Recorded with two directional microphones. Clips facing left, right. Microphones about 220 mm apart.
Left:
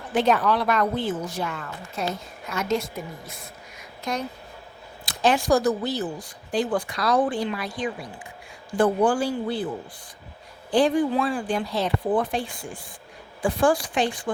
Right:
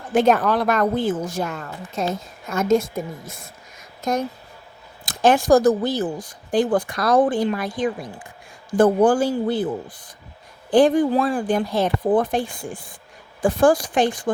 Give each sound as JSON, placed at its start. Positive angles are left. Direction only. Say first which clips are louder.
{"t": 0.1, "sound": "speech", "louder": "right 4 dB", "side_deg": -45}
{"t": 3.8, "sound": "a sound", "louder": "right 6 dB", "side_deg": -45}
{"t": 5.0, "sound": "speech", "louder": "right 5 dB", "side_deg": -50}
{"t": 8.8, "sound": "speech", "louder": "right 5 dB", "side_deg": -45}
{"t": 10.7, "sound": "speech", "louder": "right 5 dB", "side_deg": -50}